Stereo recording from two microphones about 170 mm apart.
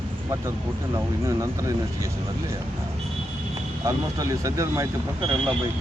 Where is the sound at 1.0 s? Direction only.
15° right (ahead or behind).